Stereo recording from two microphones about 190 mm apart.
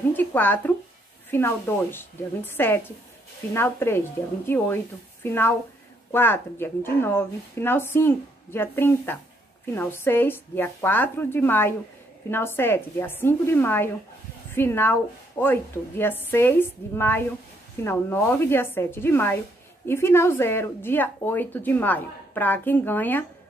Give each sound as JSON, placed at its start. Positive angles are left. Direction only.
{"t": 0.1, "sound": "a woman's voice", "side_deg": 10}